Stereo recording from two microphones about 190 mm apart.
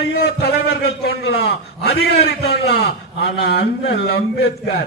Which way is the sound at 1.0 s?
60° left (ahead or behind).